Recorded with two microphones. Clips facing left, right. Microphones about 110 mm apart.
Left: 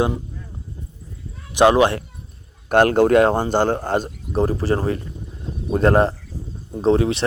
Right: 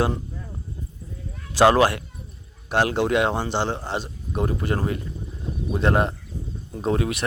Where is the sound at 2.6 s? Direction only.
50° left (ahead or behind).